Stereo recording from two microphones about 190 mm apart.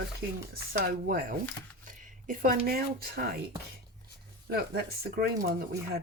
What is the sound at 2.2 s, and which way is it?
Speech, 45° right (ahead or behind).